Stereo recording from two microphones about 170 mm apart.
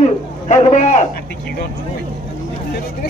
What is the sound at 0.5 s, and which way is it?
Speech, 45° left (ahead or behind).